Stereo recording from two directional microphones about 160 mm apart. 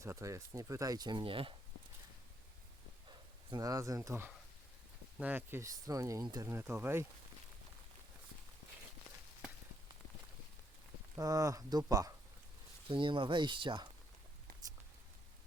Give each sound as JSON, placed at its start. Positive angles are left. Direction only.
{"t": 0.0, "sound": "speech", "side_deg": -20}
{"t": 3.5, "sound": "speech", "side_deg": -20}
{"t": 11.2, "sound": "speech", "side_deg": -20}